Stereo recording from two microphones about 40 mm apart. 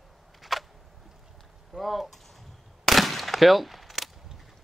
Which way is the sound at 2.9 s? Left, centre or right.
Centre.